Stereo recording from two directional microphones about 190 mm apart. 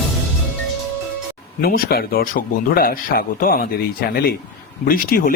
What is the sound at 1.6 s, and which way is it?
A man's voice, 50° left (ahead or behind).